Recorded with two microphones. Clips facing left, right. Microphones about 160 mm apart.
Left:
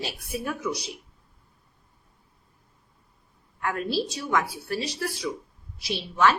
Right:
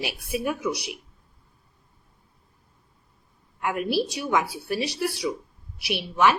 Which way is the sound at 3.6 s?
15° right (ahead or behind).